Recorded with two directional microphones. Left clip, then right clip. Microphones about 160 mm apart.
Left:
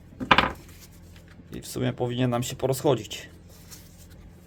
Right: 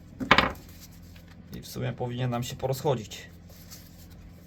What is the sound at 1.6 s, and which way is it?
Speech, 60° left (ahead or behind).